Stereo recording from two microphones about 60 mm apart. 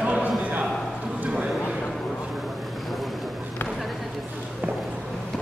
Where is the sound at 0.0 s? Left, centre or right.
Right.